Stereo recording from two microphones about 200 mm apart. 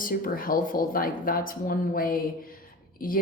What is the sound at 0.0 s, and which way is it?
Speech, 45° left (ahead or behind).